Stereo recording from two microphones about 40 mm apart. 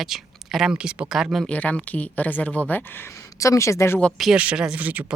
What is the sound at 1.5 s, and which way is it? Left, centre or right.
Speech, left.